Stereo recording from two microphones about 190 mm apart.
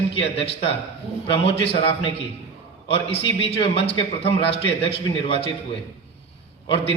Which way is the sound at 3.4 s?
30° left (ahead or behind).